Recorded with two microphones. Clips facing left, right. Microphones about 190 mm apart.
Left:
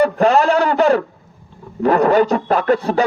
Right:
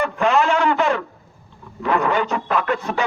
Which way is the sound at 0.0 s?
35° left (ahead or behind).